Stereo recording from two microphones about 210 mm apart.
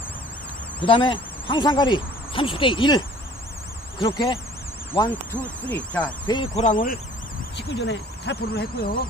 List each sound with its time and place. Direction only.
0.8 s speech: 25° left (ahead or behind)
4.0 s speech: 25° left (ahead or behind)
5.4 s speech: 5° left (ahead or behind)
6.2 s speech: 20° left (ahead or behind); by 7.0 s 40° left (ahead or behind)
7.5 s speech: 55° left (ahead or behind)